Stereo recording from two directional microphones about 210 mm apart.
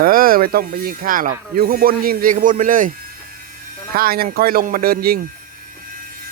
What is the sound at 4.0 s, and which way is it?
Speech, 45° right (ahead or behind).